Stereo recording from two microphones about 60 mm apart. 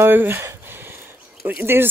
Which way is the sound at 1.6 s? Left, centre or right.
Right.